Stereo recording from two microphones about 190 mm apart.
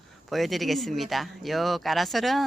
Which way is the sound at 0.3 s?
Centre (ahead or behind).